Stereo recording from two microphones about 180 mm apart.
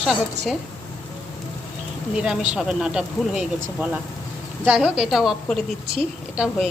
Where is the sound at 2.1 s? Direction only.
5° right (ahead or behind).